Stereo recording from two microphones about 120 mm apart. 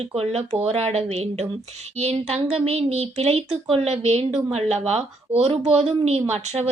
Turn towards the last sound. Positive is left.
turn(degrees=-60)  # may be behind; listen again after turning